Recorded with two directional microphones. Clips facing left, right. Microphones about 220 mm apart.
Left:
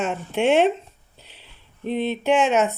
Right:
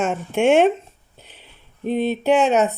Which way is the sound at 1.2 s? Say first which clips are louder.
Right 3 dB; 50° right (ahead or behind).